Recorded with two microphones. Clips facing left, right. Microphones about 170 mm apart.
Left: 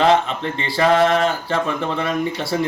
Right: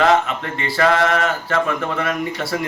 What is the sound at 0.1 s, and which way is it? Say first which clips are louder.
Speech: even; 30° left (ahead or behind).